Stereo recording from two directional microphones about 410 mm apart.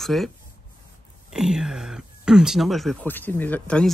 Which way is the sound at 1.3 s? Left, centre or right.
Centre.